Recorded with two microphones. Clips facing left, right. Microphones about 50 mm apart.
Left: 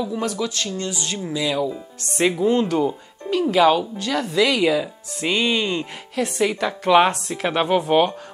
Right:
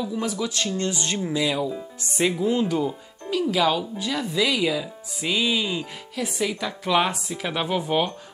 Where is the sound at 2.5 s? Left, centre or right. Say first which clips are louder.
Left 3 dB; left.